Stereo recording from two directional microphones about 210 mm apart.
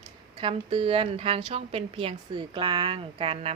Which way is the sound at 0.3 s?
25° right (ahead or behind).